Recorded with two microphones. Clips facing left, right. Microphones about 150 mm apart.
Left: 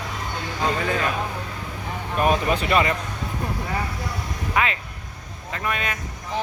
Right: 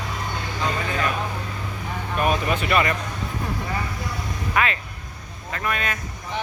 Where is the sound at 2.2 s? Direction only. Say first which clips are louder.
Left 2 dB; 35° left (ahead or behind).